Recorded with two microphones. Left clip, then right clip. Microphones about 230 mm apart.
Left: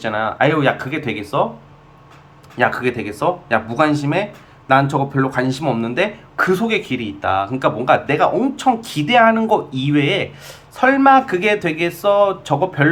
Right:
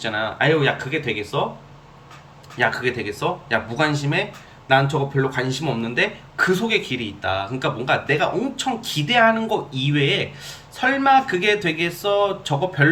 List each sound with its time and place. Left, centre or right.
0.0 s speech: centre
2.6 s speech: centre